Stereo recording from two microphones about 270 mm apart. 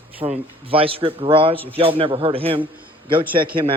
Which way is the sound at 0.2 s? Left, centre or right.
Right.